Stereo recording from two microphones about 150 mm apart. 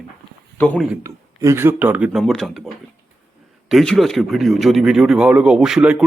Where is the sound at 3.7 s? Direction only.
Centre (ahead or behind).